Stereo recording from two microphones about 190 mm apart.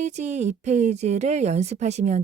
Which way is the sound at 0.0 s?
35° right (ahead or behind).